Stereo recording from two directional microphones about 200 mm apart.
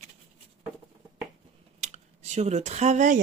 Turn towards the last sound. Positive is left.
turn(degrees=-35)  # may be behind; listen again after turning